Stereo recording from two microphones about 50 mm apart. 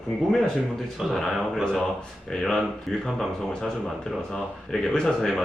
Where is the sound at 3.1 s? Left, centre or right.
Centre.